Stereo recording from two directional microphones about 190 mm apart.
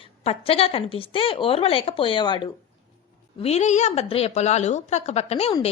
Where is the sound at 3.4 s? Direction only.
35° left (ahead or behind).